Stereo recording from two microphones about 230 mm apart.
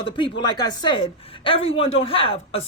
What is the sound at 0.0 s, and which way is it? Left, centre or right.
Speech, left.